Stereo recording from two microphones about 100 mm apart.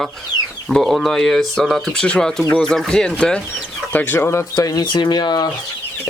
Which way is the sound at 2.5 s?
5° left (ahead or behind).